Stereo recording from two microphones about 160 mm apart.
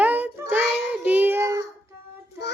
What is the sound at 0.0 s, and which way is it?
Child singing, 10° right (ahead or behind).